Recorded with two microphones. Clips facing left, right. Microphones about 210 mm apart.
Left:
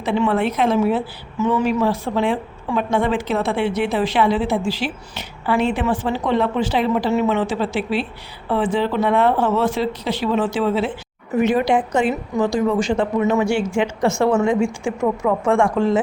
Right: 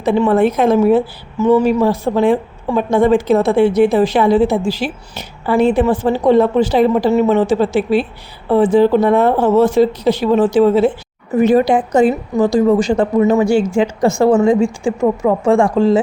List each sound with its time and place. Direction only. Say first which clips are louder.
0.0 s a woman's voice: right 6 dB; 45° right (ahead or behind)